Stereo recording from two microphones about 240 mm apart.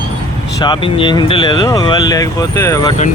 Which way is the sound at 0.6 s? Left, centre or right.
Left.